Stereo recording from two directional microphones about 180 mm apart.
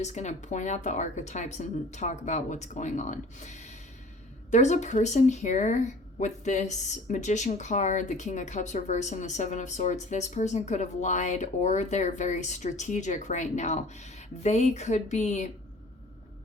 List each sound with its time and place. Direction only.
0.0 s speech: 40° left (ahead or behind)